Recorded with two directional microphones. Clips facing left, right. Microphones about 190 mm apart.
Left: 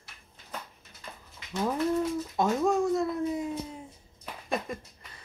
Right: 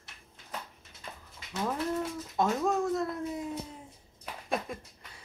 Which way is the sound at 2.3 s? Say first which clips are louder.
Left 2 dB; centre (ahead or behind).